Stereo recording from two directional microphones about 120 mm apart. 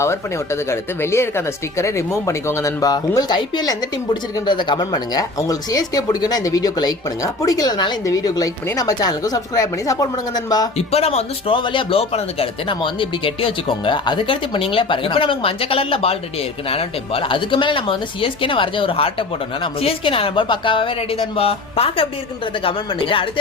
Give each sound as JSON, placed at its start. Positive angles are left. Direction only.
{"t": 0.0, "sound": "speech", "side_deg": 20}
{"t": 10.8, "sound": "speech", "side_deg": 60}
{"t": 11.5, "sound": "speech", "side_deg": 45}